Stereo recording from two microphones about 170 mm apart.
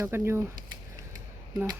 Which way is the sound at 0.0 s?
15° right (ahead or behind).